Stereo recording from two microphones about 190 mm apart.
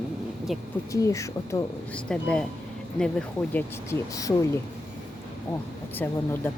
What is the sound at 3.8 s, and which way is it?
Speech, 15° left (ahead or behind).